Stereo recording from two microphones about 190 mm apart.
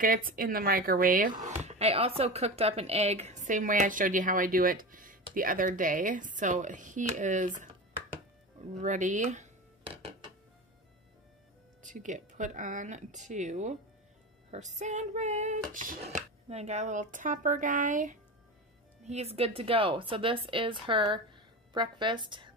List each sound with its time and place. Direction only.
0.0 s speech: 45° right (ahead or behind)
8.1 s music: 35° right (ahead or behind)
11.8 s a woman's voice: 40° right (ahead or behind); by 22.5 s 25° right (ahead or behind)